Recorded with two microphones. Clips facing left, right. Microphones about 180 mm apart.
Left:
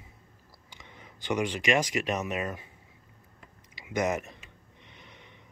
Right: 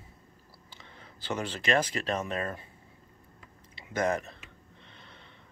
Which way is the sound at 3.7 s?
10° left (ahead or behind).